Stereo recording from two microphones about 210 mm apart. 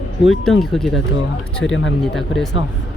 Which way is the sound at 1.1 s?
65° left (ahead or behind).